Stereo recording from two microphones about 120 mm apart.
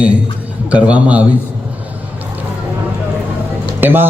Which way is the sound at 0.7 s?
10° right (ahead or behind).